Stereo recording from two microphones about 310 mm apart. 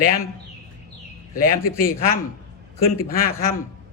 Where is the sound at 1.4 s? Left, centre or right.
Left.